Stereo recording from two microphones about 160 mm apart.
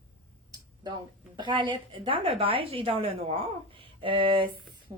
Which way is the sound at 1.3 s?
30° right (ahead or behind).